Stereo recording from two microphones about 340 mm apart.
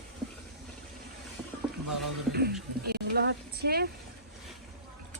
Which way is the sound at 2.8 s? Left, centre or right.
Right.